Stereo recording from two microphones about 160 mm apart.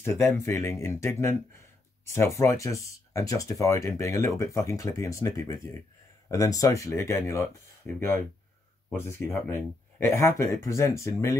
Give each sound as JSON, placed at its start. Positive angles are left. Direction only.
{"t": 0.0, "sound": "speech", "side_deg": 15}